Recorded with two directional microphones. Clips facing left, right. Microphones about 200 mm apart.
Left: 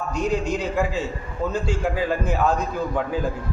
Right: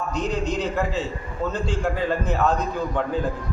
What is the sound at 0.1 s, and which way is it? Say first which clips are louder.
A man's voice: left 3 dB; 10° left (ahead or behind).